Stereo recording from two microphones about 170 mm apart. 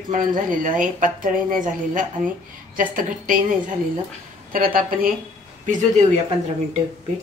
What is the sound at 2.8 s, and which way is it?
Speech, 55° right (ahead or behind).